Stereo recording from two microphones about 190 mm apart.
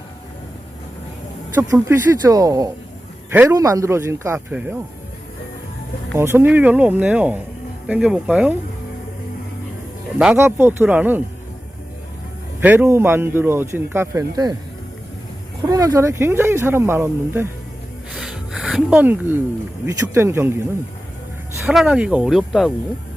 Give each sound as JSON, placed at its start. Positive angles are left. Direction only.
{"t": 1.5, "sound": "a man's voice", "side_deg": -15}
{"t": 6.1, "sound": "a man's voice", "side_deg": -15}
{"t": 10.2, "sound": "a man's voice", "side_deg": -10}
{"t": 12.5, "sound": "a man's voice", "side_deg": -10}
{"t": 15.6, "sound": "a man's voice", "side_deg": -15}
{"t": 18.1, "sound": "a sound", "side_deg": 0}
{"t": 19.8, "sound": "a man's voice", "side_deg": -10}
{"t": 21.7, "sound": "speech", "side_deg": -5}